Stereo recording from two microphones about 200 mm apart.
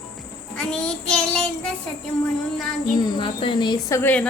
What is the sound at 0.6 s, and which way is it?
Child singing, 5° left (ahead or behind).